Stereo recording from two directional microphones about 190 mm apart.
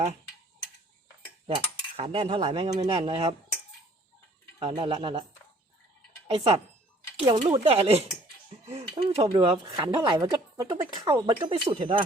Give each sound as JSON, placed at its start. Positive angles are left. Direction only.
{"t": 1.5, "sound": "speech", "side_deg": -30}
{"t": 4.6, "sound": "speech", "side_deg": -30}
{"t": 6.3, "sound": "speech", "side_deg": -30}